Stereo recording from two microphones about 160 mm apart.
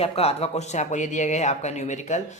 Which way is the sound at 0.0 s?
40° left (ahead or behind).